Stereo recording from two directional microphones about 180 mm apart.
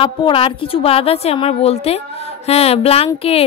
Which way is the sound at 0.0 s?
30° left (ahead or behind).